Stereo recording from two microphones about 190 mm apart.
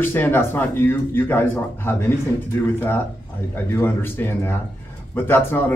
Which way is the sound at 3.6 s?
10° left (ahead or behind).